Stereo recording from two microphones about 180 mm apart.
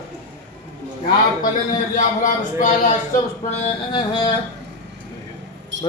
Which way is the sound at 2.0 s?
45° left (ahead or behind).